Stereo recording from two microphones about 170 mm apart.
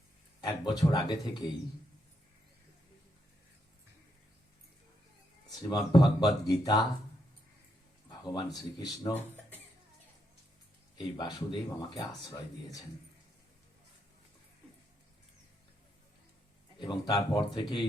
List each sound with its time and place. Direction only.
0.4 s speech: 25° left (ahead or behind)
5.5 s speech: 25° left (ahead or behind)
8.2 s speech: 25° left (ahead or behind)
10.9 s speech: 25° left (ahead or behind)
16.7 s speech: 25° left (ahead or behind)